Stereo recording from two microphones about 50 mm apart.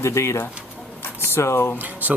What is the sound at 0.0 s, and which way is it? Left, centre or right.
Speech, left.